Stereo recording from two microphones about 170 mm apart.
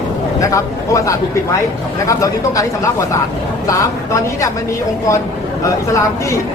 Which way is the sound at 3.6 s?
20° left (ahead or behind).